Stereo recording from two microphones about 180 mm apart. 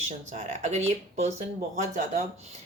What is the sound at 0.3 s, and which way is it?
Speech, 40° right (ahead or behind).